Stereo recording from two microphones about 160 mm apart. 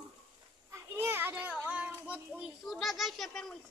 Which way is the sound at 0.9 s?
15° right (ahead or behind).